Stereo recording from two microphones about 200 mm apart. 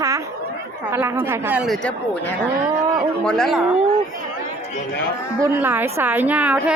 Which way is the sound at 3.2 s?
5° left (ahead or behind).